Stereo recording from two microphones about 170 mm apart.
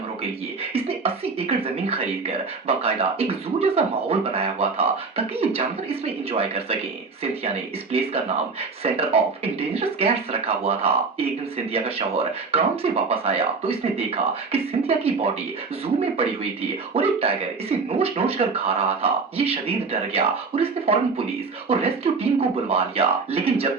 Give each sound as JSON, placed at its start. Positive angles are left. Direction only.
{"t": 0.7, "sound": "speech", "side_deg": -35}
{"t": 7.9, "sound": "speech", "side_deg": -40}